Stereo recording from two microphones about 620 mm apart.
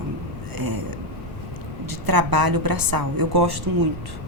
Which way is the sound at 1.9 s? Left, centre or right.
Right.